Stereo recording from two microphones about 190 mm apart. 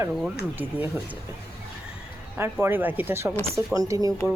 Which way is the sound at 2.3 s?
10° right (ahead or behind).